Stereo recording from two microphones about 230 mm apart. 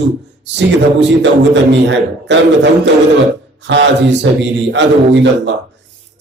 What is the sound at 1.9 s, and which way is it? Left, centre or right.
A man's voice, right.